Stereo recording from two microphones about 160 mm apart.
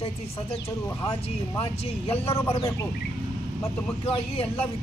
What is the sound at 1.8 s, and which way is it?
Speech, 40° left (ahead or behind).